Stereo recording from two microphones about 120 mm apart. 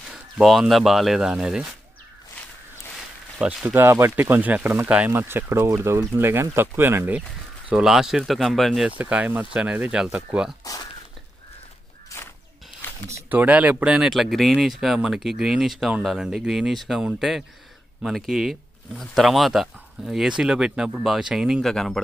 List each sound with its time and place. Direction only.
0.1 s speech: 5° right (ahead or behind)
3.6 s speech: 20° right (ahead or behind)
7.7 s speech: 5° right (ahead or behind)
8.9 s speech: 10° right (ahead or behind)
13.3 s speech: 15° right (ahead or behind); by 22.0 s centre (ahead or behind)